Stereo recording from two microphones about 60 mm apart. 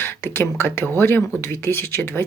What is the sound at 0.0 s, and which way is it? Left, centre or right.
Speech, left.